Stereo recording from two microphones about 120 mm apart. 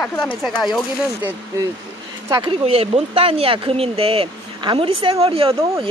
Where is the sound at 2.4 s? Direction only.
50° right (ahead or behind).